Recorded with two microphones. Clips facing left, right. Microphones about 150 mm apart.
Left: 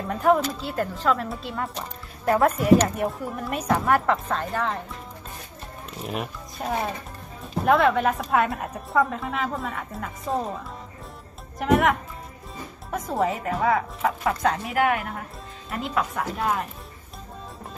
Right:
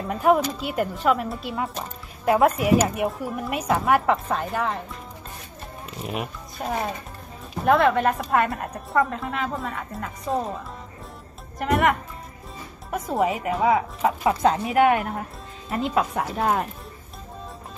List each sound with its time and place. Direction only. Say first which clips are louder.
0.0 s a woman's voice: right 1 dB; 5° right (ahead or behind)
0.6 s speech: right 2 dB; 10° right (ahead or behind)
5.9 s a woman's voice: even; centre (ahead or behind)
11.6 s a woman's voice: left 1 dB; centre (ahead or behind)
13.3 s speech: right 2 dB; 15° right (ahead or behind); by 16.6 s 35° right (ahead or behind)